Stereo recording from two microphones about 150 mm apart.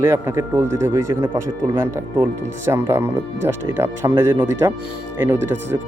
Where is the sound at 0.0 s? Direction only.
20° right (ahead or behind).